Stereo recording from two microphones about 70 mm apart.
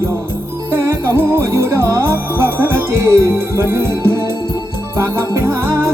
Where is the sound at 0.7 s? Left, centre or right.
Right.